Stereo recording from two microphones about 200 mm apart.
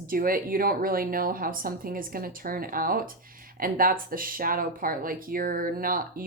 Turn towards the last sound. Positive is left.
turn(degrees=-45)  # may be behind; listen again after turning